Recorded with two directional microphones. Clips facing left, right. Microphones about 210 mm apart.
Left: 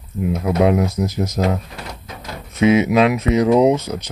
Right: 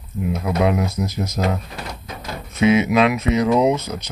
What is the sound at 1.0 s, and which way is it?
Speech, 15° left (ahead or behind).